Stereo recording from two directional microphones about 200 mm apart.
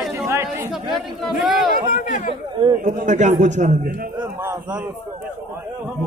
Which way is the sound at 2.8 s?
35° right (ahead or behind).